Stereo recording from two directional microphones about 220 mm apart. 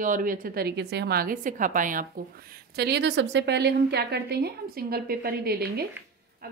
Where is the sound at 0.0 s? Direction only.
40° right (ahead or behind).